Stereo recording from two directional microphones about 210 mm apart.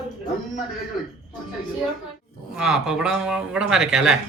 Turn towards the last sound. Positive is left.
turn(degrees=0)  # may be behind; listen again after turning